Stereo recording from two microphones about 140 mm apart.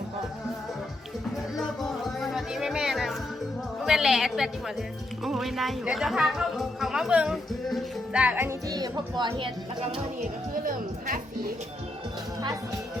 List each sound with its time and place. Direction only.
1.5 s music: centre (ahead or behind)
3.8 s speech: 5° right (ahead or behind); by 9.5 s 35° right (ahead or behind)
10.7 s a woman's voice: 80° right